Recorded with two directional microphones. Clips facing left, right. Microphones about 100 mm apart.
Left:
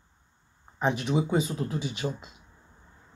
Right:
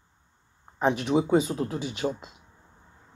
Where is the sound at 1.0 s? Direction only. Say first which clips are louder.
Right 6 dB; 45° right (ahead or behind).